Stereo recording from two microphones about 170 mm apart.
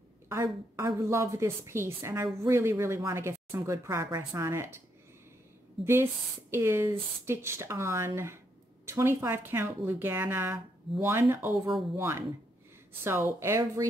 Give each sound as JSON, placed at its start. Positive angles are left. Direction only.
{"t": 0.3, "sound": "speech", "side_deg": -15}
{"t": 6.5, "sound": "speech", "side_deg": -15}